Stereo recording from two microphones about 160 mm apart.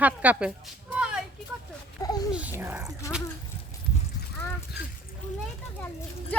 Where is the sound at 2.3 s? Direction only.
10° right (ahead or behind).